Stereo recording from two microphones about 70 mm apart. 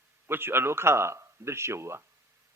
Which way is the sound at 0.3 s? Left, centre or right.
Right.